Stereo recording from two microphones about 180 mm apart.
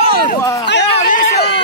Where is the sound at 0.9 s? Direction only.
40° left (ahead or behind).